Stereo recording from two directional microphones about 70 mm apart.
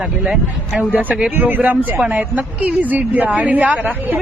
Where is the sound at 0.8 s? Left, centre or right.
Right.